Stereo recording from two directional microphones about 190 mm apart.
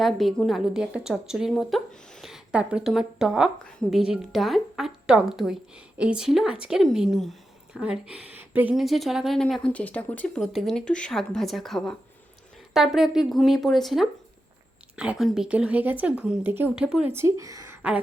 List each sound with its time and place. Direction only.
0.0 s a woman's voice: centre (ahead or behind); by 17.7 s 15° right (ahead or behind)